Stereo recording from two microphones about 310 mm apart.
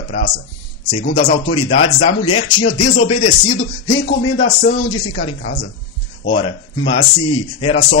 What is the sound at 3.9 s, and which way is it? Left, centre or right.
Speech, left.